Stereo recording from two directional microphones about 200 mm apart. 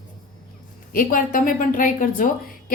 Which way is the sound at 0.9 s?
45° left (ahead or behind).